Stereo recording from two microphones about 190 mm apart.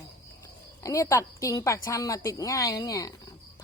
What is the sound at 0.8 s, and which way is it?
A woman's voice, 15° left (ahead or behind).